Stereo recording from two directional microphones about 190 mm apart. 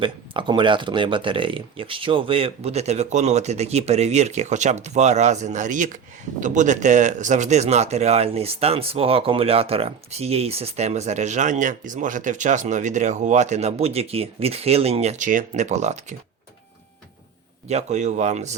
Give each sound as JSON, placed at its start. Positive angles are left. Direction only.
{"t": 0.0, "sound": "speech", "side_deg": -25}
{"t": 17.7, "sound": "speech", "side_deg": -35}